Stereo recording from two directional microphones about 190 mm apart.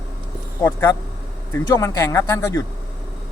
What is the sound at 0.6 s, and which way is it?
A man's voice, 15° left (ahead or behind).